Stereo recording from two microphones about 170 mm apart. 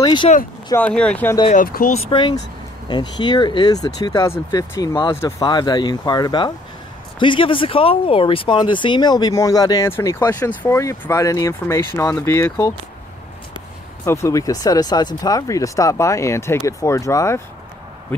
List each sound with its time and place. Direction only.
0.0 s speech: 25° left (ahead or behind)
0.7 s speech: 5° left (ahead or behind)
1.5 s speech: 55° left (ahead or behind)
2.0 s speech: 30° left (ahead or behind)
14.0 s speech: 15° left (ahead or behind)